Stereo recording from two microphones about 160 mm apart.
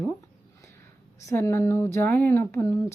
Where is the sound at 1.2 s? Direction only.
20° left (ahead or behind).